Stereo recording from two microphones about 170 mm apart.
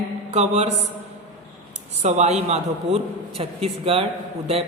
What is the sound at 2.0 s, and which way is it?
Speech, 40° right (ahead or behind).